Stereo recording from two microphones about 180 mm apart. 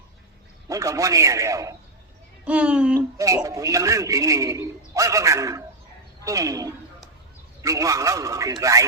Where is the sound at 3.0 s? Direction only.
20° right (ahead or behind).